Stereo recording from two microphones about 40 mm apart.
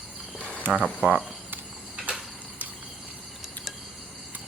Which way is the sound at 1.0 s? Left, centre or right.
Right.